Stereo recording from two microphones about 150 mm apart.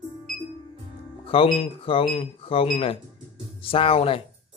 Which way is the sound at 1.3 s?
35° left (ahead or behind).